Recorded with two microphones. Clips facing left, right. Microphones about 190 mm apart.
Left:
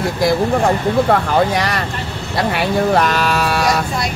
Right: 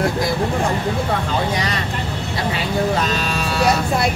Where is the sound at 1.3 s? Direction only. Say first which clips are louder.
Left 5 dB; 65° left (ahead or behind).